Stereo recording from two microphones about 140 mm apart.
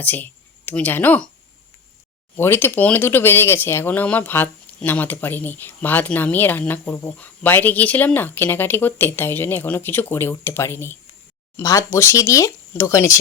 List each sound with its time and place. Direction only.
0.0 s speech: 10° left (ahead or behind)
2.3 s speech: 15° left (ahead or behind)